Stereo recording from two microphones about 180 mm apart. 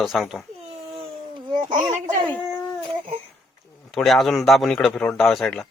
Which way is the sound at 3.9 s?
Centre (ahead or behind).